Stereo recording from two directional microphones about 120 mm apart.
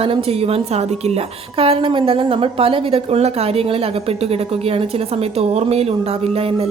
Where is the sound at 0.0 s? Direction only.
50° right (ahead or behind).